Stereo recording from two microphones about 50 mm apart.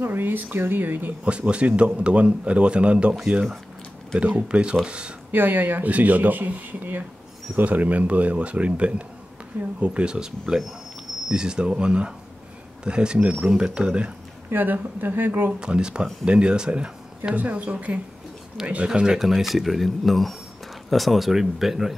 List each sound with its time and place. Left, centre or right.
0.0 s speech: right
1.2 s a man's voice: right
4.2 s a man's voice: right
5.3 s a man's voice: right; by 13.3 s centre
13.3 s speech: centre
13.6 s a man's voice: right
14.5 s speech: right
15.6 s a man's voice: centre
17.4 s a man's voice: right
18.6 s speech: centre